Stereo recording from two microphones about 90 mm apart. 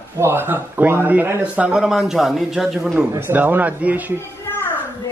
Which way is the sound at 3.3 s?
20° right (ahead or behind).